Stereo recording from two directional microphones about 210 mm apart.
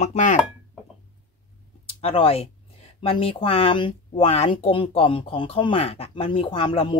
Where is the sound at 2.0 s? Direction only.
25° left (ahead or behind).